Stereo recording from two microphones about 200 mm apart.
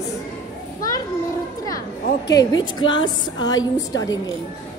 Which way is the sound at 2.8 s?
20° left (ahead or behind).